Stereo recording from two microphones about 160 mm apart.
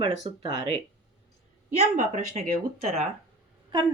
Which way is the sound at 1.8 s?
50° right (ahead or behind).